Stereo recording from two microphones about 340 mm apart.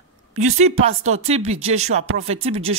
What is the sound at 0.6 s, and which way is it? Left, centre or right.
Speech, centre.